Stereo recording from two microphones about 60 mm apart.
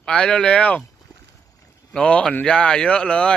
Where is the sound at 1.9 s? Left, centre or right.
Centre.